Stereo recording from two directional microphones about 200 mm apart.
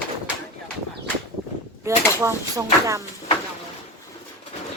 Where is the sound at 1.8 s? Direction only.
15° right (ahead or behind).